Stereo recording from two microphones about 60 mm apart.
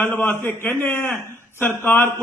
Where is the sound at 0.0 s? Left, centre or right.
Left.